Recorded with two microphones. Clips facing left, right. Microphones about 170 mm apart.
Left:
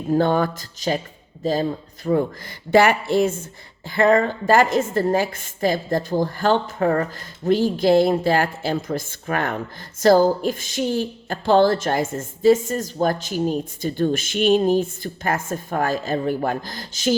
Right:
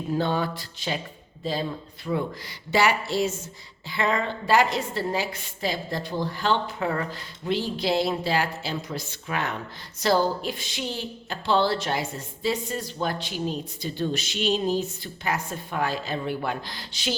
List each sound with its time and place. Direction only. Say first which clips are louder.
0.1 s a woman's voice: left 7 dB; 50° left (ahead or behind)